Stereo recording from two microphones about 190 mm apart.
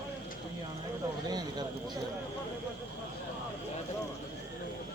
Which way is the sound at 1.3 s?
20° right (ahead or behind).